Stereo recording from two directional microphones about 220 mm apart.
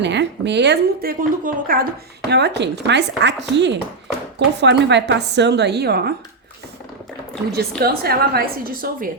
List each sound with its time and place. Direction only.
0.0 s a woman's voice: 50° right (ahead or behind)
7.5 s a woman's voice: 45° right (ahead or behind)